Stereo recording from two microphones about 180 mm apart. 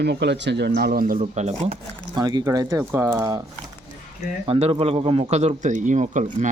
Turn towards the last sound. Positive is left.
turn(degrees=-45)  # may be behind; listen again after turning